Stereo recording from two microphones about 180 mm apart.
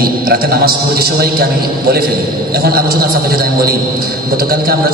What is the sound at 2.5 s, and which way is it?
A man's voice, 60° right (ahead or behind).